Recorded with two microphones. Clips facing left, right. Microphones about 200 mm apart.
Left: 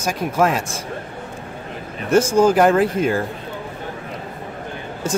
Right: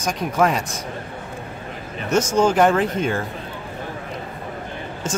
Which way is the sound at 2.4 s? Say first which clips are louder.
Left 1 dB; 5° left (ahead or behind).